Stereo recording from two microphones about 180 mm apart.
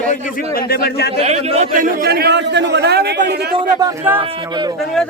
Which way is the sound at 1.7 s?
50° right (ahead or behind).